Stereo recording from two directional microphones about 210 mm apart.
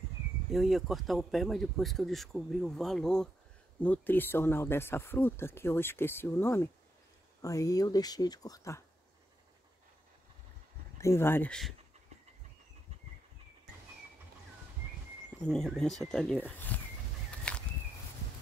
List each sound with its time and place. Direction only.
0.5 s speech: centre (ahead or behind); by 8.8 s 15° left (ahead or behind)
11.0 s speech: 10° left (ahead or behind)
15.5 s speech: centre (ahead or behind)